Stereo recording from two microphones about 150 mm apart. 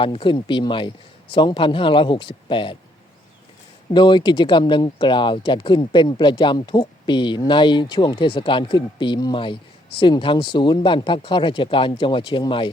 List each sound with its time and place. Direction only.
0.0 s speech: 35° left (ahead or behind)
3.9 s speech: 30° left (ahead or behind)